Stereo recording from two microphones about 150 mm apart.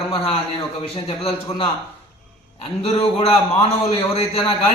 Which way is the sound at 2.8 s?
40° left (ahead or behind).